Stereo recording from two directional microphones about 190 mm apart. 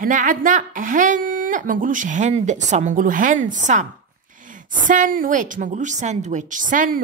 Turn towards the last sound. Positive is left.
turn(degrees=-45)  # may be behind; listen again after turning